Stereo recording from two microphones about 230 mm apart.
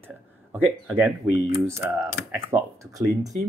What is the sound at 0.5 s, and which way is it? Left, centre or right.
Speech, centre.